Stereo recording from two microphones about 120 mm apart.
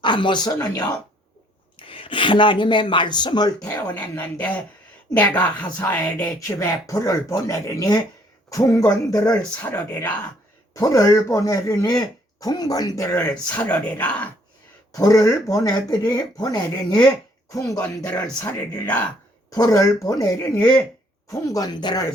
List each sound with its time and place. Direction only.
0.0 s speech: 40° left (ahead or behind)
3.9 s speech: 15° left (ahead or behind)
6.6 s speech: 30° left (ahead or behind)
9.6 s speech: 20° left (ahead or behind)
10.8 s speech: 30° left (ahead or behind)
13.1 s speech: 15° left (ahead or behind)
14.9 s speech: 30° left (ahead or behind)
18.4 s speech: 10° left (ahead or behind)
19.5 s speech: 30° left (ahead or behind)